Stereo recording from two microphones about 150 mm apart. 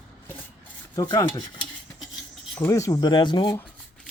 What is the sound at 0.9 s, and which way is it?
Speech, 20° left (ahead or behind).